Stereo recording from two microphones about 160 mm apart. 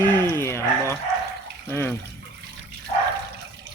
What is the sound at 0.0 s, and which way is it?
Dog, 15° left (ahead or behind).